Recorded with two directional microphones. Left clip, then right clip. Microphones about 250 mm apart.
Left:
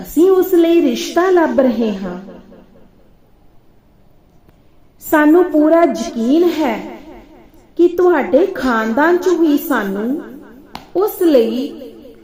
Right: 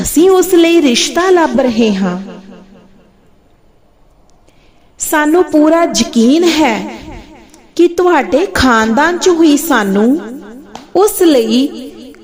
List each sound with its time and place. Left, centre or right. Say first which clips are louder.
0.2 s a woman's voice: right 3 dB; right
5.1 s a woman's voice: right 1 dB; right